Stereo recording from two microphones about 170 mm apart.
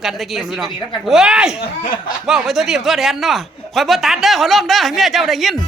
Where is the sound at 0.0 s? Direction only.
Centre (ahead or behind).